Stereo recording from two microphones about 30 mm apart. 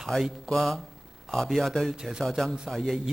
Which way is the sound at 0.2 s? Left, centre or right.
Centre.